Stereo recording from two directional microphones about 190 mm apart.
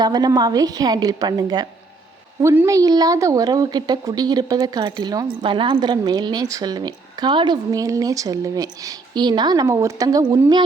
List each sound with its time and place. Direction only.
0.0 s a woman's voice: 20° right (ahead or behind)